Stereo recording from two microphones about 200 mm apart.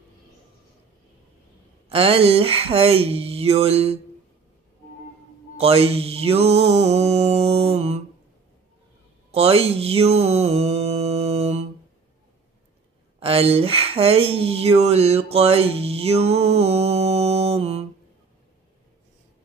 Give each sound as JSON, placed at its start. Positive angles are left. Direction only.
{"t": 1.9, "sound": "speech", "side_deg": -30}
{"t": 5.6, "sound": "mantra", "side_deg": -30}
{"t": 9.3, "sound": "mantra", "side_deg": -30}
{"t": 13.2, "sound": "speech", "side_deg": -30}
{"t": 15.3, "sound": "mantra", "side_deg": -30}